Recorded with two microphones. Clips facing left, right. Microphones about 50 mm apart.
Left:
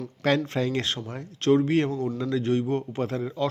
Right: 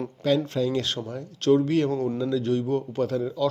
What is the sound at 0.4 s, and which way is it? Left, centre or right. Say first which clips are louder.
Speech: right 1 dB; left.